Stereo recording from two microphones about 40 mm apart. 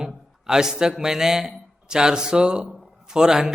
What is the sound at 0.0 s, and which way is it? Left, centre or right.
A man's voice, centre.